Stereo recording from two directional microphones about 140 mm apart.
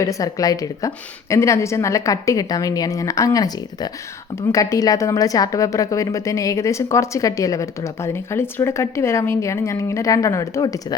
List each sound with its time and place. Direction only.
0.0 s a woman's voice: 25° left (ahead or behind)